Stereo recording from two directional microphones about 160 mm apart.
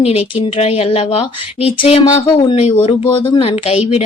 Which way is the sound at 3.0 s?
20° left (ahead or behind).